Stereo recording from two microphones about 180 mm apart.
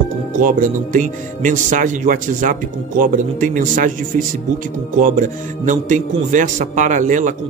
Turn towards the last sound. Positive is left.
turn(degrees=-45)  # may be behind; listen again after turning